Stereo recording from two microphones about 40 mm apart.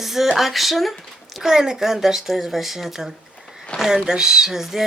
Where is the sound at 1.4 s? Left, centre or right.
Centre.